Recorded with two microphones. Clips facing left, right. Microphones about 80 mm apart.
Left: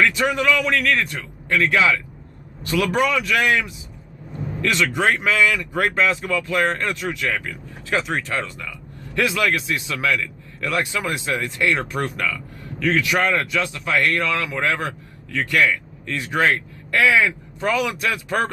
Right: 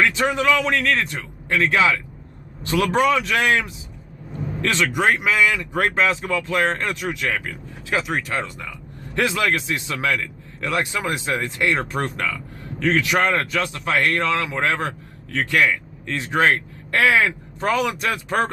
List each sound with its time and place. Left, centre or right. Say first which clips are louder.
0.0 s a man's voice: even; right
4.9 s a man's voice: even; centre; by 17.8 s right
17.8 s a man's voice: even; right